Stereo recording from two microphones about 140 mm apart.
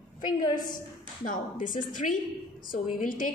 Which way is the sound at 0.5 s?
75° left (ahead or behind).